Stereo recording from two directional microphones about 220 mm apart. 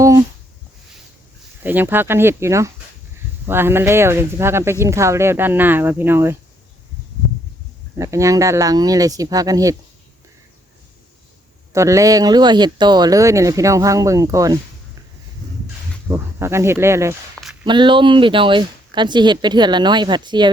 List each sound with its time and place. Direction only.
1.6 s speech: 10° right (ahead or behind)
7.9 s speech: 15° right (ahead or behind)
11.7 s speech: 15° right (ahead or behind)
16.0 s speech: 10° right (ahead or behind)
17.4 s a sound: 5° right (ahead or behind)
17.7 s speech: 20° right (ahead or behind)